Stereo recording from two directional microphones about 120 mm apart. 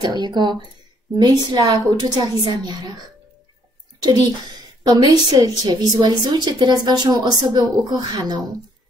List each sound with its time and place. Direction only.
0.0 s a woman's voice: 35° right (ahead or behind)
4.0 s a woman's voice: 35° right (ahead or behind)